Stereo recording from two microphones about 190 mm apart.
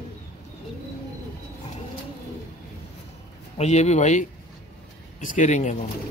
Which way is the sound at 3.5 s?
35° left (ahead or behind).